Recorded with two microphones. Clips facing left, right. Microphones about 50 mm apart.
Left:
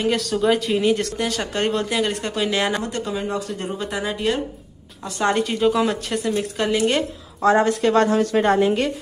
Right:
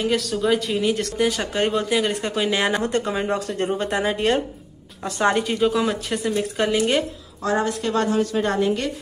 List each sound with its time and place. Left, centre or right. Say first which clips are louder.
0.0 s speech: left 2 dB; centre
1.1 s speech: right 2 dB; centre
2.8 s speech: right 3 dB; right
3.3 s speech: right 3 dB; right
5.3 s speech: left 5 dB; centre
7.4 s speech: left 6 dB; left
8.5 s speech: left 6 dB; left